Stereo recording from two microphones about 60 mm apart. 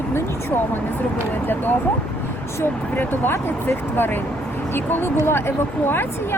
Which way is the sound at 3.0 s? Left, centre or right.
Left.